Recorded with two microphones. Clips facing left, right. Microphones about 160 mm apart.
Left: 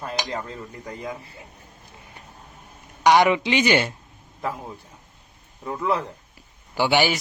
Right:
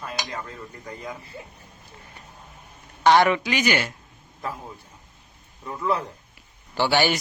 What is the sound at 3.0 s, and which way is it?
Speech, 15° left (ahead or behind).